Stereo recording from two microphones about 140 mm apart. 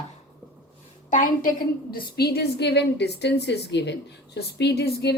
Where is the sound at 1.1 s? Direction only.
80° left.